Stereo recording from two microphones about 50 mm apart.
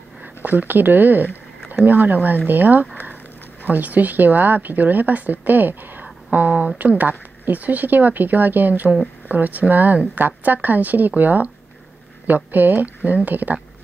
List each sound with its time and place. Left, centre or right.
0.2 s speech: right
6.3 s a sound: right
6.8 s speech: right